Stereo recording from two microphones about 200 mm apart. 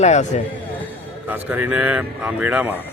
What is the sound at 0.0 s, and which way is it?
Speech, 35° left (ahead or behind).